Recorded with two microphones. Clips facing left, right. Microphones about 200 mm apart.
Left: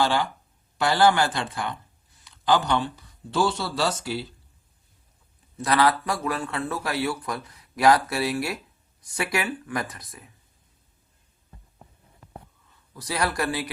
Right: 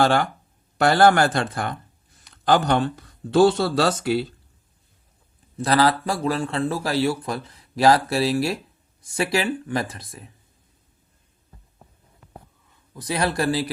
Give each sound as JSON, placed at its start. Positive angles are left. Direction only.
{"t": 0.0, "sound": "speech", "side_deg": -50}
{"t": 5.5, "sound": "speech", "side_deg": -35}
{"t": 12.9, "sound": "speech", "side_deg": -20}